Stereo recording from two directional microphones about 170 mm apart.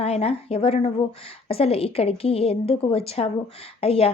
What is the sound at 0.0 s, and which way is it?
A woman's voice, 35° left (ahead or behind).